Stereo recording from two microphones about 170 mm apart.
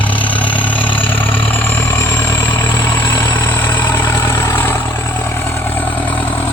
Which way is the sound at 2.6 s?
25° left (ahead or behind).